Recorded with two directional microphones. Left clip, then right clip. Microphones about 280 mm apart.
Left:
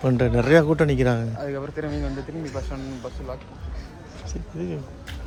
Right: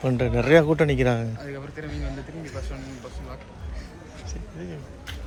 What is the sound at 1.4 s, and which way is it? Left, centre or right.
Speech, centre.